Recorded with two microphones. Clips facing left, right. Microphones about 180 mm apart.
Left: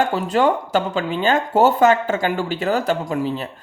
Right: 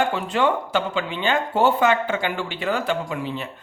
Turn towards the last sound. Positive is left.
turn(degrees=40)  # may be behind; listen again after turning